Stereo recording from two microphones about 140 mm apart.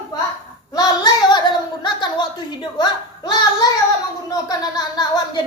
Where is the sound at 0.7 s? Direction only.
30° left (ahead or behind).